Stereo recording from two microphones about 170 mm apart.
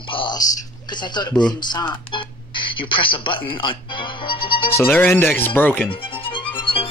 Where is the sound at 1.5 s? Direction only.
25° left (ahead or behind).